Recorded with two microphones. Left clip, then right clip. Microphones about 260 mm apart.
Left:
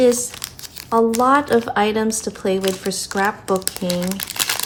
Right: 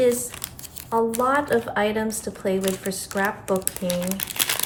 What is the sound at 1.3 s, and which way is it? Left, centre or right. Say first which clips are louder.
Speech: left 6 dB; left.